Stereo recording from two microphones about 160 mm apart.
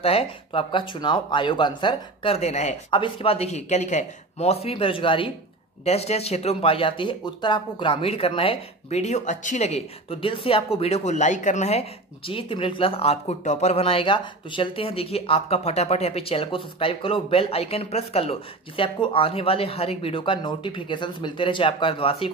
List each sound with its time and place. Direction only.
0.0 s speech: 35° left (ahead or behind)
2.9 s speech: 30° left (ahead or behind)